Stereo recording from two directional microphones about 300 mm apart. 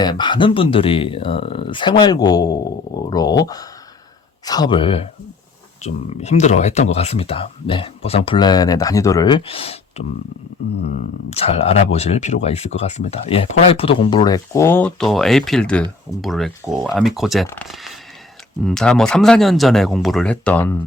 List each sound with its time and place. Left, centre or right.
0.0 s speech: centre
10.0 s a sound: left
11.3 s speech: left; by 20.7 s centre